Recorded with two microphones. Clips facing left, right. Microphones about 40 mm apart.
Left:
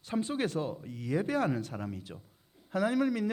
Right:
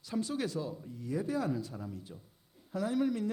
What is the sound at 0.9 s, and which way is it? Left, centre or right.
A man's voice, left.